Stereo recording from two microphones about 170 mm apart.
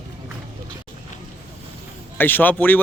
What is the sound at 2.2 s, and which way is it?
Speech, 10° left (ahead or behind).